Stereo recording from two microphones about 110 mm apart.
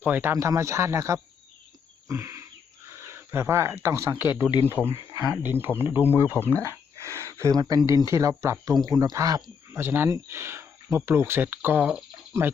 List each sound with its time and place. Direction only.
0.0 s speech: 20° right (ahead or behind)
2.0 s a sound: 25° right (ahead or behind)
2.9 s speech: 25° right (ahead or behind)
6.0 s speech: 20° left (ahead or behind)
7.0 s speech: 25° right (ahead or behind)
9.8 s speech: 20° right (ahead or behind)